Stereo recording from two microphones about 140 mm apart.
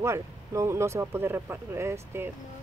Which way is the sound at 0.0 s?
20° right (ahead or behind).